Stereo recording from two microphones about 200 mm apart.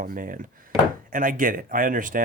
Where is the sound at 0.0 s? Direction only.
45° right (ahead or behind).